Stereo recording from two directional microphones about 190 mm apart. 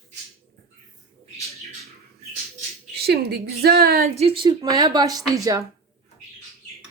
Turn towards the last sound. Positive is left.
turn(degrees=-20)  # may be behind; listen again after turning